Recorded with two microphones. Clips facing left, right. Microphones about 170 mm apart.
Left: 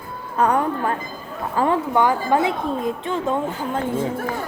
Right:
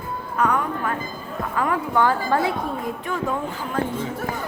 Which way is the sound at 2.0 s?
15° left (ahead or behind).